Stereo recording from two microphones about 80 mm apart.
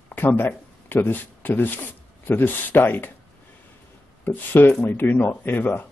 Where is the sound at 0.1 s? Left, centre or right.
Left.